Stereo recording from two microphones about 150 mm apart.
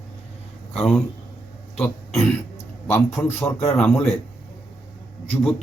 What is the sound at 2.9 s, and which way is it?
Speech, 15° left (ahead or behind).